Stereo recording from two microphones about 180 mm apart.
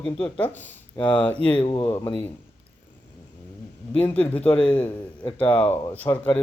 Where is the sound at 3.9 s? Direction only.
10° left (ahead or behind).